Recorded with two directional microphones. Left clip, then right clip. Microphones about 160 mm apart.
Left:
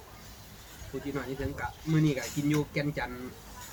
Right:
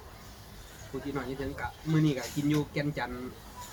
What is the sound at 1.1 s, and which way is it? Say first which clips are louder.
Speech: even; centre (ahead or behind).